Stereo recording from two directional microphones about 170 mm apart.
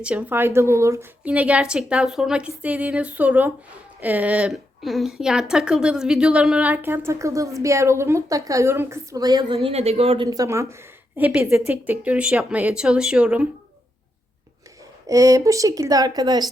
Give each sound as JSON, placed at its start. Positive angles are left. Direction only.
{"t": 0.0, "sound": "speech", "side_deg": -10}
{"t": 11.2, "sound": "a woman's voice", "side_deg": -5}
{"t": 15.0, "sound": "speech", "side_deg": -20}